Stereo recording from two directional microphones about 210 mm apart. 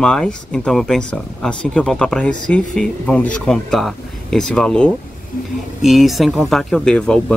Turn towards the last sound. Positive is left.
turn(degrees=5)  # may be behind; listen again after turning